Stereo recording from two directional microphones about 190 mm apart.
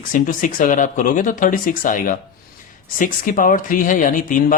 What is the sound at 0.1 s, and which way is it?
Speech, 45° left (ahead or behind).